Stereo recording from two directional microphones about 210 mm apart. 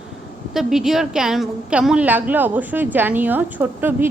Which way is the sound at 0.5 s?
Centre (ahead or behind).